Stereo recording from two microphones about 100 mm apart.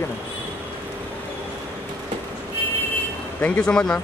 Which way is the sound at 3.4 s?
10° left (ahead or behind).